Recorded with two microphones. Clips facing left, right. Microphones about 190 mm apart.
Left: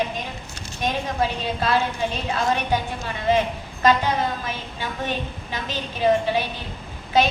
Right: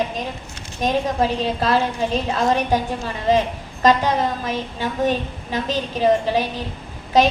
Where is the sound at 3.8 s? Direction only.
35° right (ahead or behind).